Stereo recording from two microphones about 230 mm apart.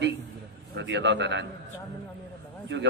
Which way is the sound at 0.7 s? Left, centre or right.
Right.